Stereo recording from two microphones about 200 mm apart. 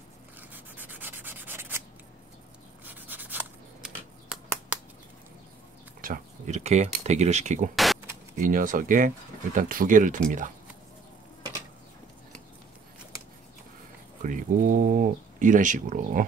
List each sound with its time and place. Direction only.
0.4 s rub: 10° right (ahead or behind)
2.8 s writing: 10° right (ahead or behind)
5.9 s speech: 45° right (ahead or behind)
7.7 s a sound: centre (ahead or behind)
8.4 s speech: 40° right (ahead or behind)
14.2 s speech: 40° right (ahead or behind)